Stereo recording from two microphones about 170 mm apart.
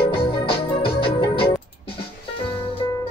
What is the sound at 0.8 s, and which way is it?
Music, 30° left (ahead or behind).